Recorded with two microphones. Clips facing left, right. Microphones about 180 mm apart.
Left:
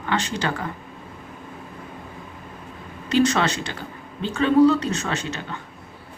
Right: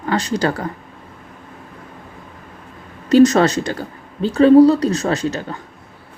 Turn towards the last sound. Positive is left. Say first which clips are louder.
# right 8 dB
turn(degrees=-40)  # may be behind; listen again after turning